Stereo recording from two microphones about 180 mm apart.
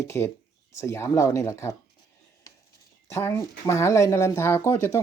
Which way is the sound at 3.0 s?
15° left (ahead or behind).